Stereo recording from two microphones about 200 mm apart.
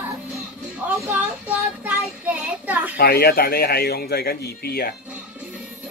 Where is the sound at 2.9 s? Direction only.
50° left (ahead or behind).